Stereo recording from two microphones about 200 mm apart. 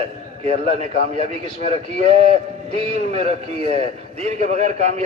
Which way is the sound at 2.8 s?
30° right (ahead or behind).